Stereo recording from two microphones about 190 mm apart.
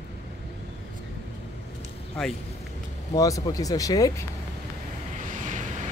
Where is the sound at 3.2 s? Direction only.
15° left (ahead or behind).